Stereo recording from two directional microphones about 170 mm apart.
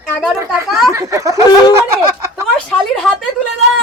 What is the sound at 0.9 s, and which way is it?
Speech, 15° right (ahead or behind).